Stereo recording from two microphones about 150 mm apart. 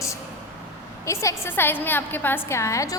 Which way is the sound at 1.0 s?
20° left (ahead or behind).